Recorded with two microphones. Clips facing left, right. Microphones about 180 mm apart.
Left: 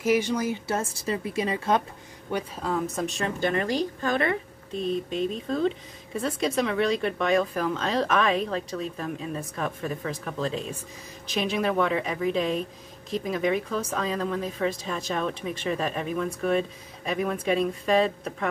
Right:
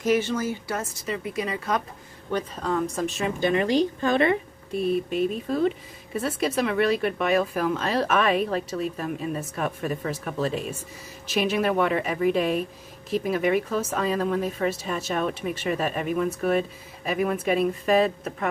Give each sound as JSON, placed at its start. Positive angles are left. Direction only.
{"t": 0.0, "sound": "speech", "side_deg": 10}
{"t": 2.3, "sound": "a woman's voice", "side_deg": 5}
{"t": 3.3, "sound": "a woman's voice", "side_deg": -15}
{"t": 4.7, "sound": "a woman's voice", "side_deg": -10}